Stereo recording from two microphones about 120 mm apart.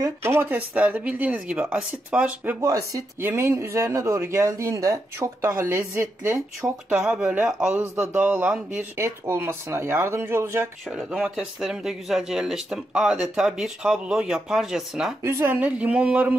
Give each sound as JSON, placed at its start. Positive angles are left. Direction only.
{"t": 0.0, "sound": "speech", "side_deg": -20}
{"t": 2.6, "sound": "speech", "side_deg": -25}
{"t": 6.9, "sound": "speech", "side_deg": -10}
{"t": 10.9, "sound": "speech", "side_deg": -5}
{"t": 15.2, "sound": "speech", "side_deg": -20}